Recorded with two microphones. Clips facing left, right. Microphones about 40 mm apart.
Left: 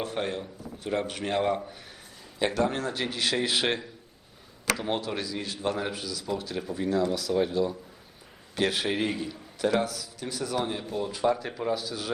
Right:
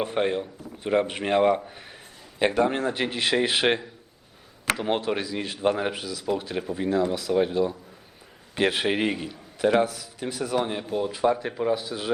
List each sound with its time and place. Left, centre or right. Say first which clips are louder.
0.0 s a man's voice: right 6 dB; right
4.6 s a sound: right 3 dB; right
4.9 s a man's voice: right 5 dB; right